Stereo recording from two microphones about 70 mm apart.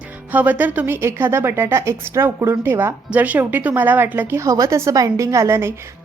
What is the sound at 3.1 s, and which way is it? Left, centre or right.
A woman's voice, right.